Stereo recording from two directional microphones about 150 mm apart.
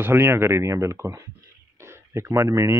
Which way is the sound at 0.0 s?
15° right (ahead or behind).